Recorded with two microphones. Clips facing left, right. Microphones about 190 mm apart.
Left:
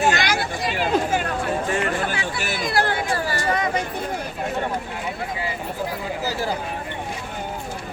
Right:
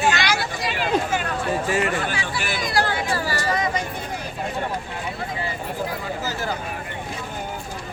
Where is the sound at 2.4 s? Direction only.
50° left (ahead or behind).